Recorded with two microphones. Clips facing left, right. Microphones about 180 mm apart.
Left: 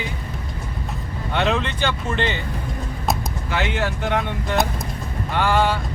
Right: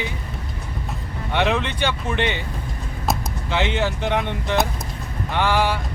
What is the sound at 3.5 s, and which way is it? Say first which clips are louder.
Speech: right 2 dB; 20° right (ahead or behind).